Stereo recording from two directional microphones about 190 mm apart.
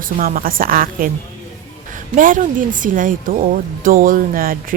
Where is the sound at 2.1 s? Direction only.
45° right (ahead or behind).